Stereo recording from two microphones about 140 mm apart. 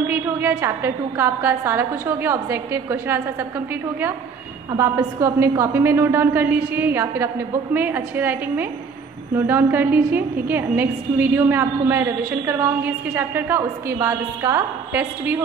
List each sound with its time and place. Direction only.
0.0 s a woman's voice: 15° right (ahead or behind)